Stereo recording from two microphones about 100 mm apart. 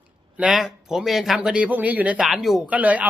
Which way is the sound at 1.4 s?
10° right (ahead or behind).